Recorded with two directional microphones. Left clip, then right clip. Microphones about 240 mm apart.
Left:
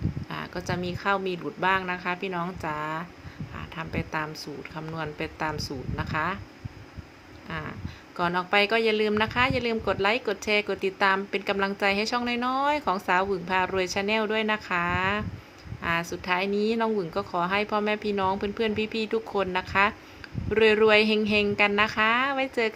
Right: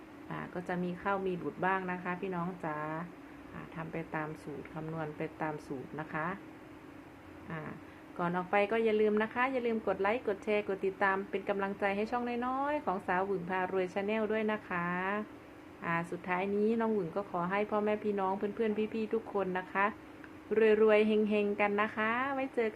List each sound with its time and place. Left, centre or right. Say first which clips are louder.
0.3 s speech: left 5 dB; left
8.1 s speech: left 8 dB; left